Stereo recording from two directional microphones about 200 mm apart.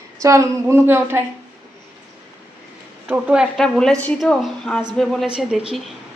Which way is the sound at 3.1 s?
5° right (ahead or behind).